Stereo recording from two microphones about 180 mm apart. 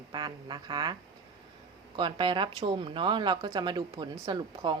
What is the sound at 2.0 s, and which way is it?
Speech, 25° right (ahead or behind).